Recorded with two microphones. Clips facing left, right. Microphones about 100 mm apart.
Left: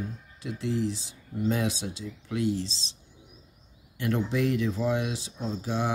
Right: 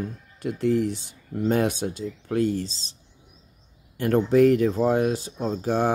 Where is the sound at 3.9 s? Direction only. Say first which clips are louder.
Right 9 dB; 45° right (ahead or behind).